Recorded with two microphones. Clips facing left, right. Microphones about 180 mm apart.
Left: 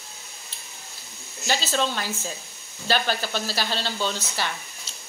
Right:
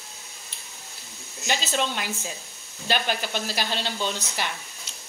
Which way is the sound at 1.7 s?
15° right (ahead or behind).